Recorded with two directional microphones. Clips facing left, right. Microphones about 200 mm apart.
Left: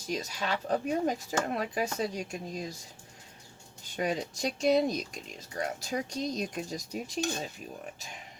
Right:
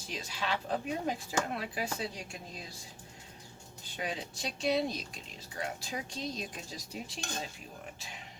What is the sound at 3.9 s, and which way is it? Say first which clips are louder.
Speech: left 7 dB; 45° left (ahead or behind).